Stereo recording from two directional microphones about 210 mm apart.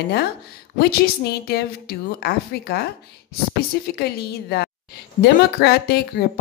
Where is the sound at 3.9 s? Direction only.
50° left (ahead or behind).